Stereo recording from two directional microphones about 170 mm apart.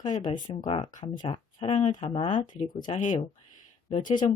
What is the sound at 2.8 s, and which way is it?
Speech, 45° left (ahead or behind).